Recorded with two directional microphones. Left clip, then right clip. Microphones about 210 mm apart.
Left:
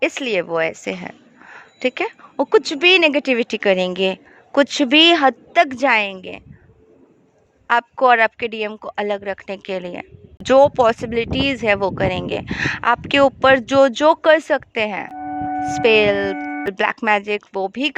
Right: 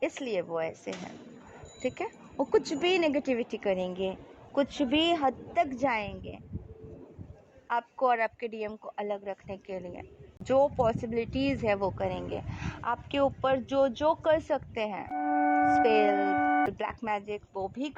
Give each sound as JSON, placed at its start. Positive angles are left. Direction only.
{"t": 0.0, "sound": "a woman's voice", "side_deg": 25}
{"t": 7.7, "sound": "a woman's voice", "side_deg": 35}
{"t": 15.1, "sound": "music", "side_deg": -15}
{"t": 15.8, "sound": "a woman's voice", "side_deg": 30}
{"t": 16.3, "sound": "music", "side_deg": -25}
{"t": 16.7, "sound": "a woman's voice", "side_deg": 35}